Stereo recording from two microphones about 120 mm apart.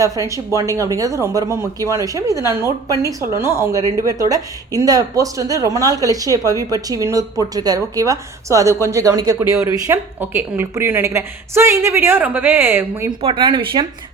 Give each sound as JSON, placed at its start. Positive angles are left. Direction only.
{"t": 0.0, "sound": "speech", "side_deg": -25}
{"t": 13.1, "sound": "speech", "side_deg": -40}